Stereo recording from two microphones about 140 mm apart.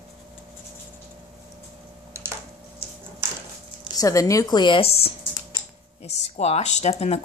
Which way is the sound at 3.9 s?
25° left (ahead or behind).